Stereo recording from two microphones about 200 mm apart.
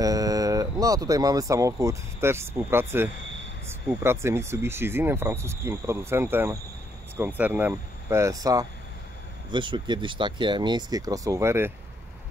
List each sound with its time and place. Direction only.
0.0 s speech: 15° right (ahead or behind)